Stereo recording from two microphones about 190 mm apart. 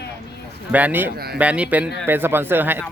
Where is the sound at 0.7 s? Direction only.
10° right (ahead or behind).